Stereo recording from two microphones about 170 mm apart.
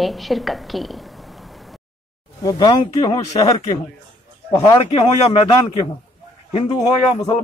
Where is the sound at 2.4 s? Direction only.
25° left (ahead or behind).